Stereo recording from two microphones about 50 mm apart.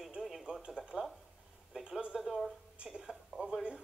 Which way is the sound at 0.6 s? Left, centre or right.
Centre.